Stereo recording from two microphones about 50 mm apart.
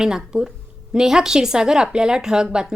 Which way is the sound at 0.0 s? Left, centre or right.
Centre.